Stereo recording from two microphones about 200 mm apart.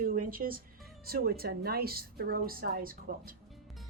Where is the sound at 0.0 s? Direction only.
45° right (ahead or behind).